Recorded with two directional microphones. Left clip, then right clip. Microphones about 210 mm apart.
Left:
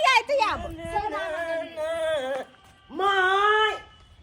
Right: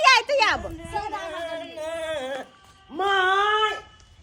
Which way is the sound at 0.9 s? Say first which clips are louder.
Left 2 dB; 30° right (ahead or behind).